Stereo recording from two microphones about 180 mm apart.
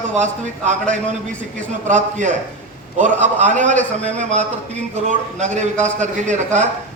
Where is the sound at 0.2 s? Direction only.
40° right (ahead or behind).